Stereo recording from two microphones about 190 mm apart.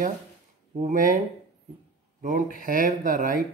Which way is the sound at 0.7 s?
45° right (ahead or behind).